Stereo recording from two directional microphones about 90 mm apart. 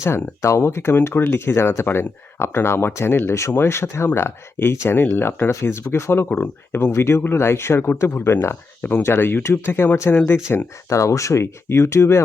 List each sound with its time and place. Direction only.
0.4 s speech: 30° left (ahead or behind)